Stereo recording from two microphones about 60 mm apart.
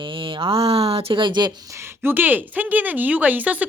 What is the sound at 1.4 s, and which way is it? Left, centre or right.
Speech, right.